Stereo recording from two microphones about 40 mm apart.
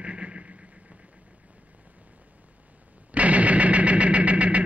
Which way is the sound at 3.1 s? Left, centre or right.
Right.